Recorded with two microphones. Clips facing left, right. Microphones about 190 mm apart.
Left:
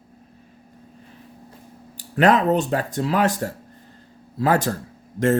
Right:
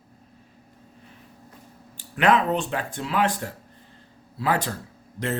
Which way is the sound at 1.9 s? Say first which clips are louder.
Left 3 dB; 40° left (ahead or behind).